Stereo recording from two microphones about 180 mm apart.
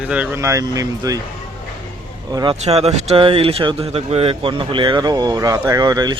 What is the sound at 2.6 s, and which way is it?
Speech, 35° right (ahead or behind).